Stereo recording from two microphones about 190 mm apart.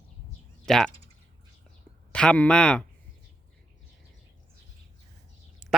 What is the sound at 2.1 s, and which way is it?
Speech, 5° left (ahead or behind).